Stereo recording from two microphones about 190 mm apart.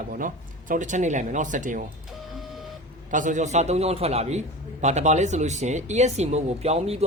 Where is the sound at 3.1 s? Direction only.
40° right (ahead or behind).